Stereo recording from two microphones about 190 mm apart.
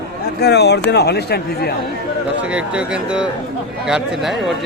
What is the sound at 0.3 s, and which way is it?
Speech, 60° left (ahead or behind).